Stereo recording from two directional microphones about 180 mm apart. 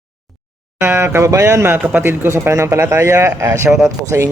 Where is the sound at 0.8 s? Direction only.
15° right (ahead or behind).